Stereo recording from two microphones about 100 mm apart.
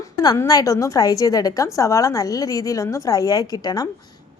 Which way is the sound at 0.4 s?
35° left (ahead or behind).